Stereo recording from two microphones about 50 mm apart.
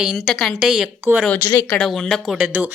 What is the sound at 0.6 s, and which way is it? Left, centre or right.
Speech, centre.